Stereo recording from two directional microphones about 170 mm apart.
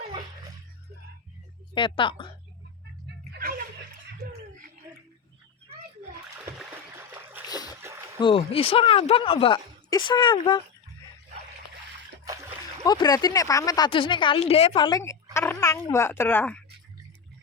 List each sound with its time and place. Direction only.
1.7 s a woman's voice: 30° left (ahead or behind)
6.6 s a sound: 10° right (ahead or behind)
7.4 s splash: 25° left (ahead or behind)
7.8 s a sound: 15° right (ahead or behind)
8.2 s speech: 30° left (ahead or behind)
12.2 s splash: 20° right (ahead or behind)
12.8 s speech: 25° left (ahead or behind)
14.8 s speech: 20° left (ahead or behind)